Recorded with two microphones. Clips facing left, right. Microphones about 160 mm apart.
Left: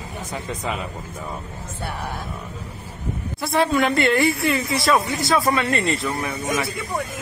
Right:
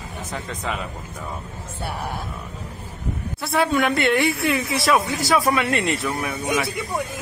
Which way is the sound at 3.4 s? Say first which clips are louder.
Left 1 dB; centre (ahead or behind).